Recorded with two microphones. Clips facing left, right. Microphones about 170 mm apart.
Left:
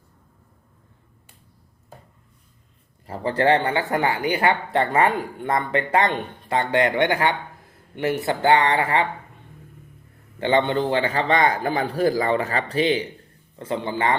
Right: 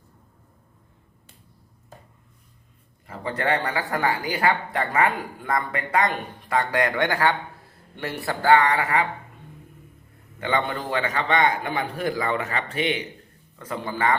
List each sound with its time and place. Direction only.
3.1 s speech: 30° left (ahead or behind)
10.4 s a man's voice: 30° left (ahead or behind)